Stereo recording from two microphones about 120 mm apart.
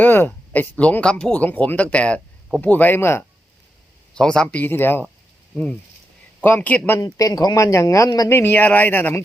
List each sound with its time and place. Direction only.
0.0 s speech: 20° left (ahead or behind)
4.1 s speech: 5° left (ahead or behind)
6.4 s speech: 15° left (ahead or behind)
7.0 s speech: 30° left (ahead or behind)